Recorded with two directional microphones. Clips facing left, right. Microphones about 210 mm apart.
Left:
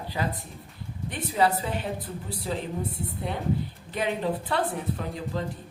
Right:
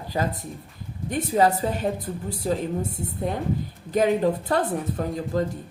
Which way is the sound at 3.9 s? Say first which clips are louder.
Right 7 dB; 40° right (ahead or behind).